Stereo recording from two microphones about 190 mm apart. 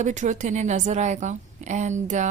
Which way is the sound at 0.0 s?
40° right (ahead or behind).